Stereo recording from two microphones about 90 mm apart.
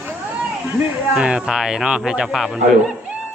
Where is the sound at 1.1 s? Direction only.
10° right (ahead or behind).